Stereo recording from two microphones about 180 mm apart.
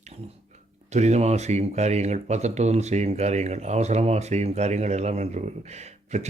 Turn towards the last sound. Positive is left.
turn(degrees=-40)  # may be behind; listen again after turning